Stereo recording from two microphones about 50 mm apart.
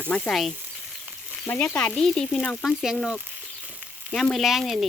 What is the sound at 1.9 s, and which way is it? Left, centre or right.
Speech, centre.